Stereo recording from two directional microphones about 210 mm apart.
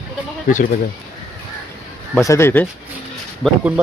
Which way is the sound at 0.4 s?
40° left (ahead or behind).